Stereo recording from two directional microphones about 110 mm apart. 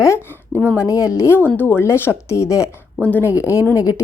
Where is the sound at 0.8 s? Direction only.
30° left (ahead or behind).